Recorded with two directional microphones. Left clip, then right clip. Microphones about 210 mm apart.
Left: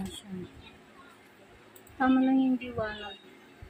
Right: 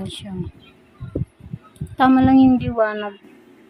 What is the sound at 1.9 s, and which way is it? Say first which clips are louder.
A woman's voice: right 12 dB; 50° right (ahead or behind).